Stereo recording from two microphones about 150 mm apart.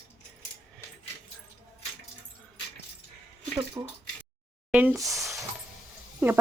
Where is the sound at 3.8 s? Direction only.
20° right (ahead or behind).